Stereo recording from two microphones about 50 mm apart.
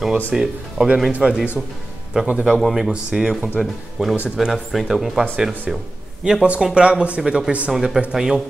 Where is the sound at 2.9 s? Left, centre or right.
Centre.